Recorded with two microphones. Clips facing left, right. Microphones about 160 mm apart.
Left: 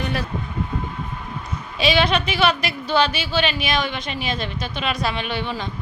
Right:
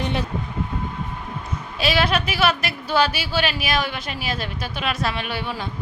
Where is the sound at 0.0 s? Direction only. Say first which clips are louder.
Right 1 dB; 25° right (ahead or behind).